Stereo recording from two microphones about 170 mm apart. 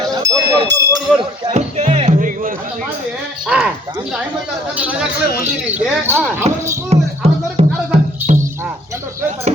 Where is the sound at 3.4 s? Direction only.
5° right (ahead or behind).